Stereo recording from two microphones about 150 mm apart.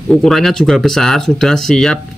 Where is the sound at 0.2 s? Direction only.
Centre (ahead or behind).